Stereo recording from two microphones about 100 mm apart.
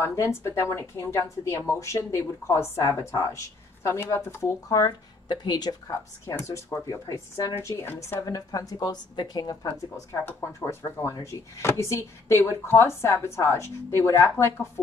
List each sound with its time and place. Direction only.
0.0 s speech: 30° left (ahead or behind); by 5.8 s 45° left (ahead or behind)
6.2 s speech: 30° left (ahead or behind)
10.6 s speech: 25° left (ahead or behind)